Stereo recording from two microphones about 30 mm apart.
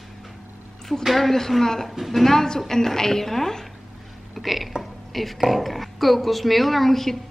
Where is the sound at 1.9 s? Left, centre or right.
Centre.